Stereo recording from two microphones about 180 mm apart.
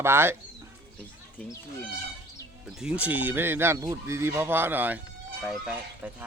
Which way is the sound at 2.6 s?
5° right (ahead or behind).